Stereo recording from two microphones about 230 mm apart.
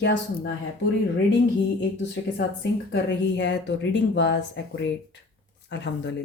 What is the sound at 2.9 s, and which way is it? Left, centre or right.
Speech, left.